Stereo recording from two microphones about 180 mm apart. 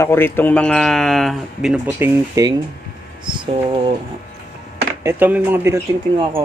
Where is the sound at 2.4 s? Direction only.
20° right (ahead or behind).